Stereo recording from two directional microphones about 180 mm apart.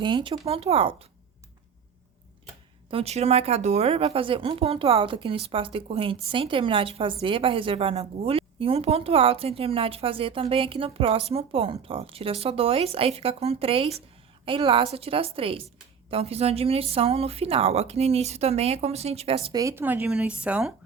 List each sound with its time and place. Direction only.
0.0 s speech: 25° right (ahead or behind)
2.9 s speech: 35° right (ahead or behind)
19.5 s speech: 15° right (ahead or behind)